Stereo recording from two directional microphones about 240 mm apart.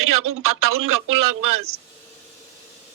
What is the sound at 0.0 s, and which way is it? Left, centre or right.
Speech, right.